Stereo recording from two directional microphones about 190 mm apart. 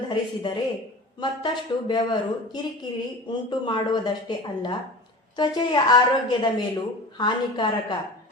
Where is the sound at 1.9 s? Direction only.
25° left (ahead or behind).